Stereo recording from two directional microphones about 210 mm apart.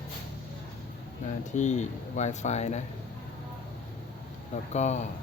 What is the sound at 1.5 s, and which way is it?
Speech, 35° left (ahead or behind).